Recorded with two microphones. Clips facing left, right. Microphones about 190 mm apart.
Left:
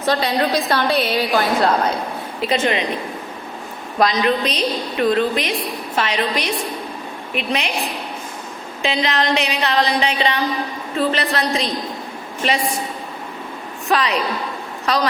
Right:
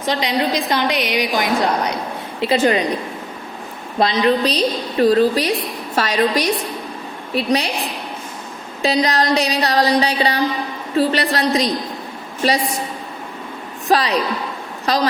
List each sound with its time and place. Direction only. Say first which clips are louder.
0.0 s a woman's voice: left 1 dB; 15° right (ahead or behind)
2.4 s a woman's voice: right 4 dB; 30° right (ahead or behind)
4.0 s a woman's voice: right 2 dB; 30° right (ahead or behind)
8.8 s a woman's voice: right 3 dB; 40° right (ahead or behind)
13.8 s a woman's voice: right 2 dB; 35° right (ahead or behind)